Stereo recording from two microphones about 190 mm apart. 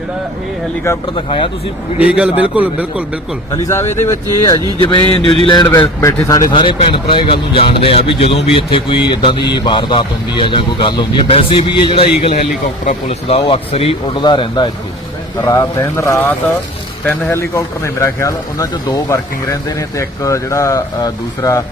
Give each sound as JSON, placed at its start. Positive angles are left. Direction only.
{"t": 1.1, "sound": "a man's voice", "side_deg": 25}
{"t": 2.0, "sound": "a man's voice", "side_deg": -5}
{"t": 3.5, "sound": "speech", "side_deg": 15}
{"t": 4.4, "sound": "a man's voice", "side_deg": 25}